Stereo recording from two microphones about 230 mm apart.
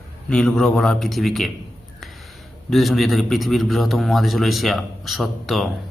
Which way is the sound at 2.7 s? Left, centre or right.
Centre.